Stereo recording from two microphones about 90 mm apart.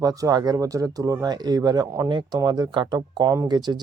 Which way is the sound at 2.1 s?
55° right (ahead or behind).